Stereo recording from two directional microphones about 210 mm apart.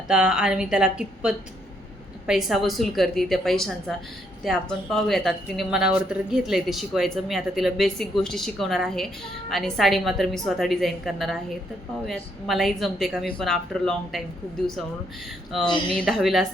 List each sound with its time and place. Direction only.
0.1 s speech: 5° right (ahead or behind)
15.5 s speech: centre (ahead or behind)